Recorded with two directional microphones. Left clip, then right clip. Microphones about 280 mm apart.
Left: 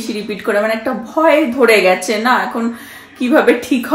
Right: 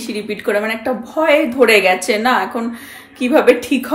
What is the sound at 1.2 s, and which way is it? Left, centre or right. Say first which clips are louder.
A woman's voice: left 1 dB; centre.